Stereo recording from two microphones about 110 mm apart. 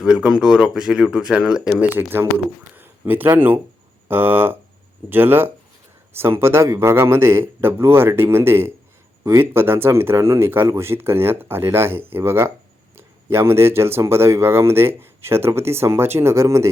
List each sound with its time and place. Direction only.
0.0 s speech: 5° right (ahead or behind)
2.7 s a sound: 20° right (ahead or behind)
3.3 s speech: 20° right (ahead or behind)